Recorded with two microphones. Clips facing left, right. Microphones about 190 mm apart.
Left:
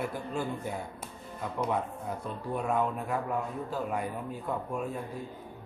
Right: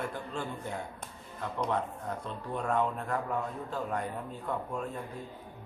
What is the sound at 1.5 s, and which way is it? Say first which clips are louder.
Speech: left 1 dB; 10° left (ahead or behind).